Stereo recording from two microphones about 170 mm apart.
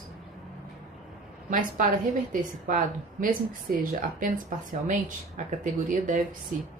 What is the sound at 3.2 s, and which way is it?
Speech, 55° right (ahead or behind).